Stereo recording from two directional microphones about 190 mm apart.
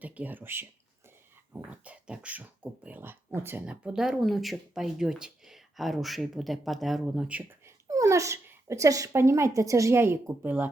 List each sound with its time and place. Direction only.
0.0 s speech: 10° right (ahead or behind)
7.9 s speech: 15° right (ahead or behind)